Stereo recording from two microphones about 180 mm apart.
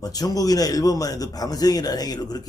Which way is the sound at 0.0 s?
20° left (ahead or behind).